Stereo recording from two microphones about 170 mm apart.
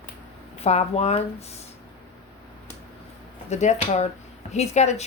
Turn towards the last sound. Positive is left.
turn(degrees=40)  # may be behind; listen again after turning